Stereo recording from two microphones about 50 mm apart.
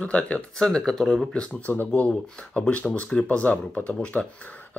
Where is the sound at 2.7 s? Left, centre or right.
Left.